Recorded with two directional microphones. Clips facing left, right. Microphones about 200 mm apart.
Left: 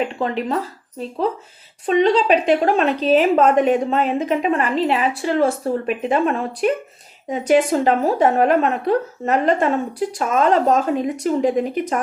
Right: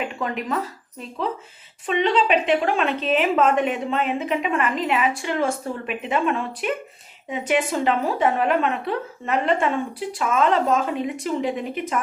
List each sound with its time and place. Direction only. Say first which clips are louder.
0.1 s speech: left 4 dB; 30° left (ahead or behind)